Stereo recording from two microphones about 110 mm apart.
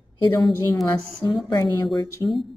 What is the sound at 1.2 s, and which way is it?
Mantra, 40° left (ahead or behind).